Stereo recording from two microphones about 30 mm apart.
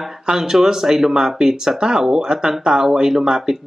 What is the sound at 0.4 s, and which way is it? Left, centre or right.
Speech, centre.